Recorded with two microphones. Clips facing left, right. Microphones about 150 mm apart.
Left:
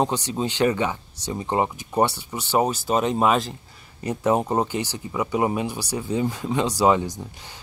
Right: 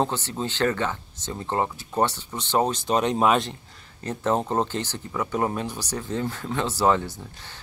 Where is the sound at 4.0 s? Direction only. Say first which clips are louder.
Left 3 dB; 10° left (ahead or behind).